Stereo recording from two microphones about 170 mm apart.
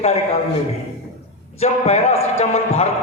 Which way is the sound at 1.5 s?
40° left (ahead or behind).